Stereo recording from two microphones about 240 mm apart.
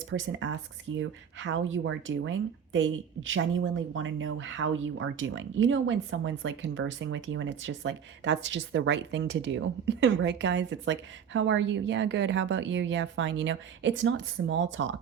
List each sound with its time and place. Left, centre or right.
0.1 s speech: right